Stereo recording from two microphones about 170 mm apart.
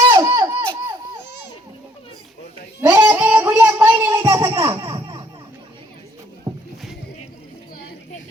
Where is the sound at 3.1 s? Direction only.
10° right (ahead or behind).